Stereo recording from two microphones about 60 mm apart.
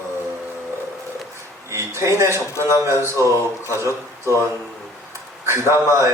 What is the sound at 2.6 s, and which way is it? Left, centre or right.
Speech, right.